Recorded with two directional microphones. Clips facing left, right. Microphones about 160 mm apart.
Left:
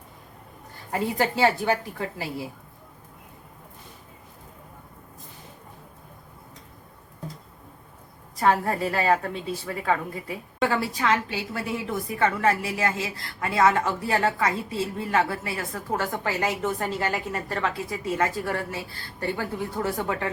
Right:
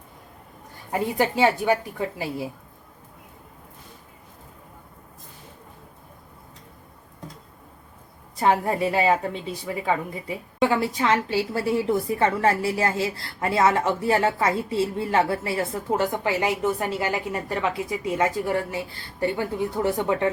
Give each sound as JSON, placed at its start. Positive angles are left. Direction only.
{"t": 0.9, "sound": "a woman's voice", "side_deg": -15}
{"t": 8.4, "sound": "a woman's voice", "side_deg": -20}
{"t": 15.9, "sound": "a woman's voice", "side_deg": -15}